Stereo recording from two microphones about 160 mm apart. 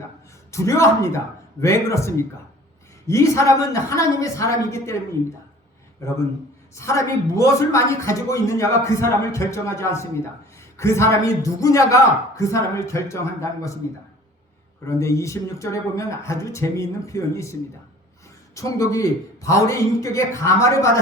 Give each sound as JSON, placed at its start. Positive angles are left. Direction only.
{"t": 0.5, "sound": "a man's voice", "side_deg": 20}
{"t": 6.0, "sound": "a man's voice", "side_deg": 15}
{"t": 14.8, "sound": "a man's voice", "side_deg": 20}